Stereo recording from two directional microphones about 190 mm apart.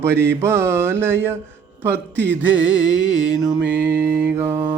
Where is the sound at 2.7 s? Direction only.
75° right (ahead or behind).